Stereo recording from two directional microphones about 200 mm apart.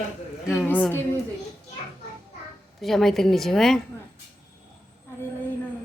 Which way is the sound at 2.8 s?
Centre (ahead or behind).